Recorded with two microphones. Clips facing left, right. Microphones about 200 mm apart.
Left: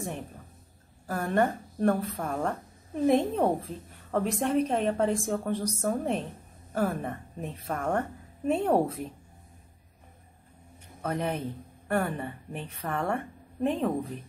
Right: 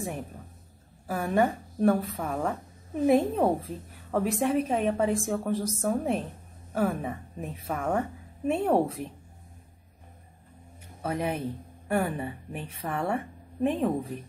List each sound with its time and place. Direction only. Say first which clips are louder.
1.0 s a woman's voice: right 1 dB; 5° right (ahead or behind)
11.0 s a woman's voice: right 1 dB; 5° right (ahead or behind)